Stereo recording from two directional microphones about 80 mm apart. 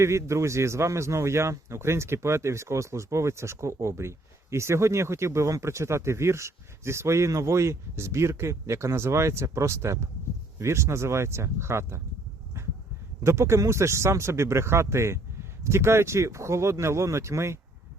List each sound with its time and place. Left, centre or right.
0.0 s speech: right
12.5 s dog: right
13.2 s speech: right